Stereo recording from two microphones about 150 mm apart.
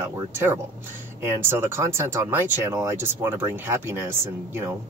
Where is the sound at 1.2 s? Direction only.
15° right (ahead or behind).